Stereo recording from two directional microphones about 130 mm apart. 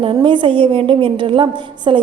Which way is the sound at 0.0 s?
40° right (ahead or behind).